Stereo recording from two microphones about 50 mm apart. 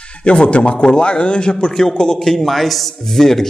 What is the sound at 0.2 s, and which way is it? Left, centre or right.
A man's voice, left.